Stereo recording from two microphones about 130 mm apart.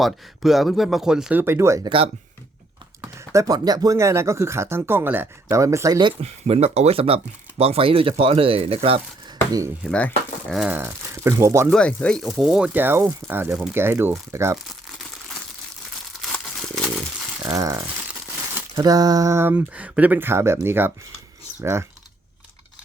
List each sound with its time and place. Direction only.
0.0 s speech: centre (ahead or behind)
1.4 s speech: 20° right (ahead or behind)
3.0 s speech: 20° right (ahead or behind)
6.0 s speech: 40° right (ahead or behind)
6.2 s speech: 55° right (ahead or behind)
9.9 s speech: 10° left (ahead or behind)
10.7 s speech: 20° right (ahead or behind)
11.7 s speech: 10° left (ahead or behind); by 14.6 s 20° right (ahead or behind)
16.3 s a sound: 5° left (ahead or behind)
17.4 s speech: 25° right (ahead or behind)